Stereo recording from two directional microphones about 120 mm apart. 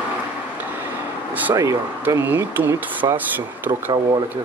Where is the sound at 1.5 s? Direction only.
30° right (ahead or behind).